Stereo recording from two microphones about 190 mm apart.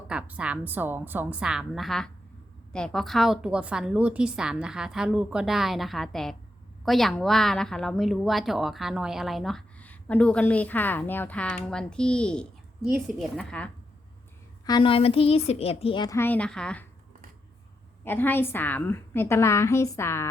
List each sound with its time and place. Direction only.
0.1 s a woman's voice: 5° right (ahead or behind)
14.6 s a woman's voice: 20° left (ahead or behind)
16.1 s a woman's voice: 10° left (ahead or behind)
18.0 s a woman's voice: 10° left (ahead or behind)